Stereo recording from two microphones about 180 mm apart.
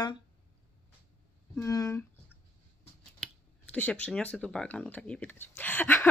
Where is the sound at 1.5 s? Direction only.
15° left (ahead or behind).